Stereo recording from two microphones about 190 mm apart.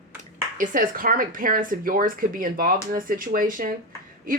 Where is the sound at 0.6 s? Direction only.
45° right (ahead or behind).